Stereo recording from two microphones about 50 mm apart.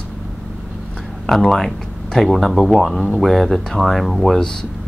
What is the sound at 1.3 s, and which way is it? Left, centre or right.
Speech, centre.